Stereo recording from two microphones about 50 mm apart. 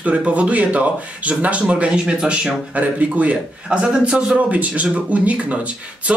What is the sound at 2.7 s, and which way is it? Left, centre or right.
Speech, right.